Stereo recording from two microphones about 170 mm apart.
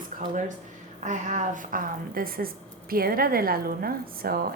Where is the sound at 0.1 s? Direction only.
50° right (ahead or behind).